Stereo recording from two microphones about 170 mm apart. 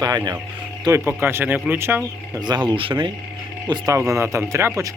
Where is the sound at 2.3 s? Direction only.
25° right (ahead or behind).